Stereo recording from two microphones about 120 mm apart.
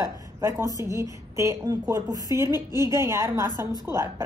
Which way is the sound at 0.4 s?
25° right (ahead or behind).